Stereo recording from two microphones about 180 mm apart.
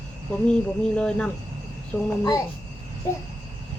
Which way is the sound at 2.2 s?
20° left (ahead or behind).